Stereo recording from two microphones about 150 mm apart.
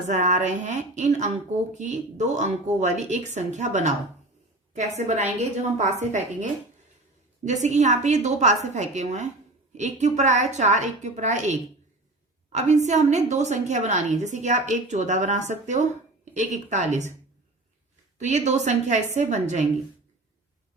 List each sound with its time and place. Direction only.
0.1 s a woman's voice: 50° right (ahead or behind)
4.9 s a woman's voice: 50° right (ahead or behind)
18.2 s a woman's voice: 50° right (ahead or behind)